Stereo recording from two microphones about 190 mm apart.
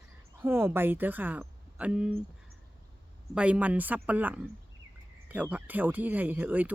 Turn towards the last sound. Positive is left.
turn(degrees=-10)  # may be behind; listen again after turning